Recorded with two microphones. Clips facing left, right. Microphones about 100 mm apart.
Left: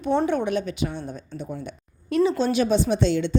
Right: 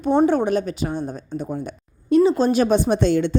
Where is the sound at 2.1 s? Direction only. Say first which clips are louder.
Right 5 dB; 30° right (ahead or behind); by 3.4 s 50° right (ahead or behind).